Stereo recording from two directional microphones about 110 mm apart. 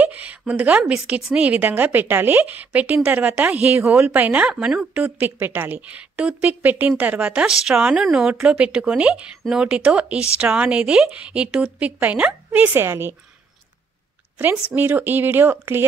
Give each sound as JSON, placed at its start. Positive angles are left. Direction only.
{"t": 0.0, "sound": "a woman's voice", "side_deg": -15}
{"t": 14.8, "sound": "a woman's voice", "side_deg": -15}